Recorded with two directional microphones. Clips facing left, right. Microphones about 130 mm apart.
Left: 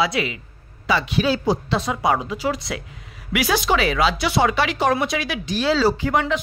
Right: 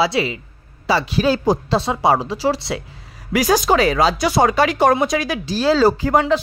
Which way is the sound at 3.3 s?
40° right (ahead or behind).